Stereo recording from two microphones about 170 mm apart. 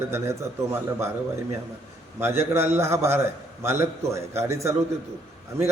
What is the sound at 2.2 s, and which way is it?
A man's voice, 15° right (ahead or behind).